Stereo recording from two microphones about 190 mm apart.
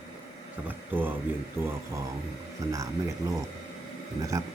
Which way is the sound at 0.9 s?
10° right (ahead or behind).